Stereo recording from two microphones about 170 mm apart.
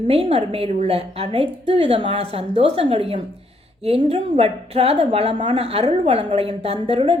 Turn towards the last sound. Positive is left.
turn(degrees=-35)  # may be behind; listen again after turning